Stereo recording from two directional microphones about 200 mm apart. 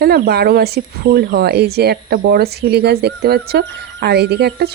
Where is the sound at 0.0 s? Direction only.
50° right (ahead or behind).